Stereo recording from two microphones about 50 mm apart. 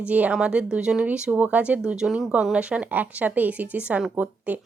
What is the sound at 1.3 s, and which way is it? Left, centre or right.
Speech, right.